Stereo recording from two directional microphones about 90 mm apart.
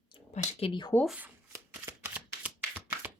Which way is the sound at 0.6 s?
60° left (ahead or behind).